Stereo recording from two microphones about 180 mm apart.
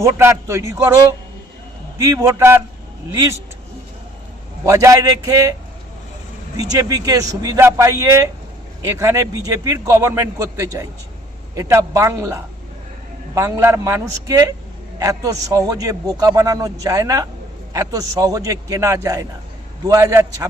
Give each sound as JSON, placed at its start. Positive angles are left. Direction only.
{"t": 0.0, "sound": "a man's voice", "side_deg": -15}
{"t": 2.0, "sound": "a man's voice", "side_deg": -15}
{"t": 4.6, "sound": "a man's voice", "side_deg": -15}
{"t": 6.6, "sound": "a man's voice", "side_deg": -20}